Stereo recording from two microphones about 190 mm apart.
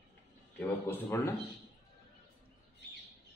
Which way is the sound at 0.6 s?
10° left (ahead or behind).